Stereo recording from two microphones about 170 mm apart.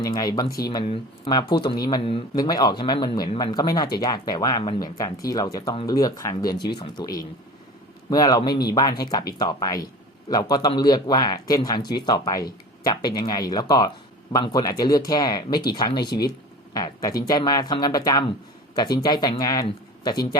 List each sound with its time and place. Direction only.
0.0 s speech: 20° left (ahead or behind)